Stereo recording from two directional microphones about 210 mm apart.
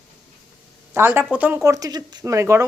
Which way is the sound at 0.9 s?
10° right (ahead or behind).